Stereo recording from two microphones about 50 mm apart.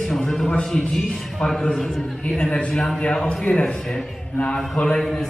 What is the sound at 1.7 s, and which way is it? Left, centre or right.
Speech, centre.